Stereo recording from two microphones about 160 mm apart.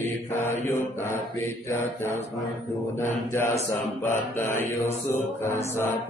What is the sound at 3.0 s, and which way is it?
Mantra, 15° left (ahead or behind).